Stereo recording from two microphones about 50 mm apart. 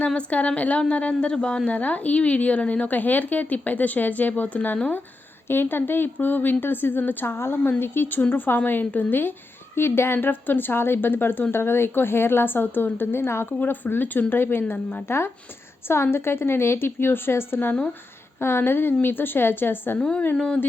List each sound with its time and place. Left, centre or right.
0.1 s a woman's voice: left
5.5 s speech: left
7.3 s a woman's voice: left
9.7 s speech: left
10.2 s speech: left
13.6 s a woman's voice: left
20.0 s a woman's voice: centre